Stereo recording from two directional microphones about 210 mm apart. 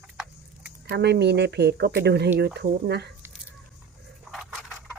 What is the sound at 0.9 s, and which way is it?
Speech, 50° right (ahead or behind).